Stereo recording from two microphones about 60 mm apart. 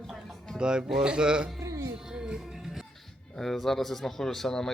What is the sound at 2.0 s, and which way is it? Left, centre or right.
Music, centre.